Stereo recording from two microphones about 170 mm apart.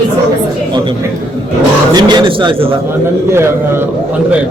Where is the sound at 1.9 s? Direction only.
25° right (ahead or behind).